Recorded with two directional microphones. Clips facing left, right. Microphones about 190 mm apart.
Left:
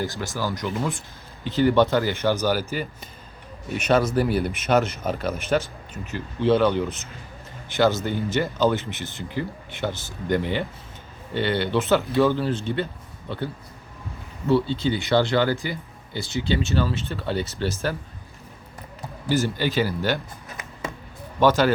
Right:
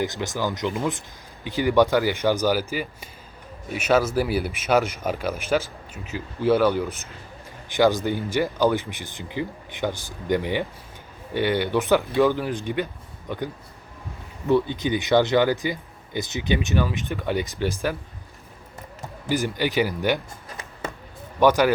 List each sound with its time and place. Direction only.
0.0 s speech: 20° right (ahead or behind)
19.3 s speech: 15° right (ahead or behind)
21.3 s speech: 15° right (ahead or behind)